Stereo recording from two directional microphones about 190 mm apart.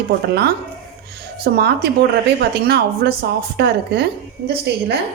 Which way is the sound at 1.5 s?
60° right (ahead or behind).